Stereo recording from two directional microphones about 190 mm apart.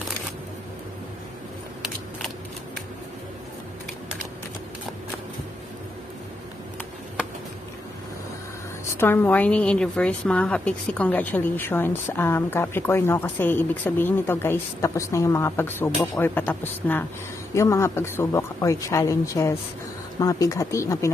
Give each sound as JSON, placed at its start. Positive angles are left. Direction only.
{"t": 8.9, "sound": "a woman's voice", "side_deg": 10}